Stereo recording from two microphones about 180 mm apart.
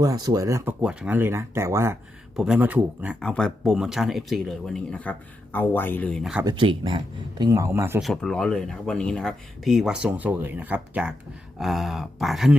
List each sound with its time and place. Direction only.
0.0 s speech: 20° right (ahead or behind)
2.3 s speech: 5° right (ahead or behind)
3.2 s speech: 5° left (ahead or behind)
6.4 s speech: 25° right (ahead or behind)
8.0 s speech: 5° left (ahead or behind)